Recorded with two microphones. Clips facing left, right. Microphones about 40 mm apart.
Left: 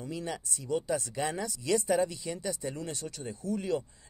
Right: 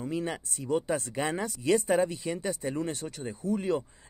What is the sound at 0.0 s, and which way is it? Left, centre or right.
Speech, right.